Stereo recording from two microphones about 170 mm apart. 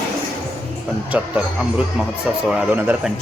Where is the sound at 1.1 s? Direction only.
5° right (ahead or behind).